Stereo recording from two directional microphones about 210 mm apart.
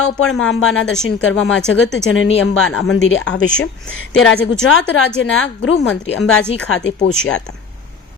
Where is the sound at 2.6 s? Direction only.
80° left.